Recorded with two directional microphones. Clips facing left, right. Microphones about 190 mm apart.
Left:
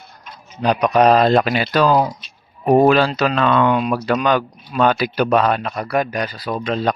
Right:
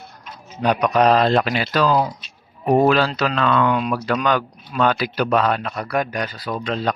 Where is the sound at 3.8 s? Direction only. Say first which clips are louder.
Left 3 dB; 10° left (ahead or behind).